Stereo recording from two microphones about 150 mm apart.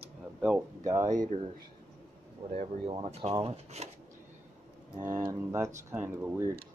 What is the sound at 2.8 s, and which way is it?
Speech, 40° right (ahead or behind).